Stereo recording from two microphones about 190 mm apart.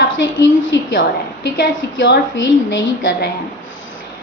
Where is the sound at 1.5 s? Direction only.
60° left (ahead or behind).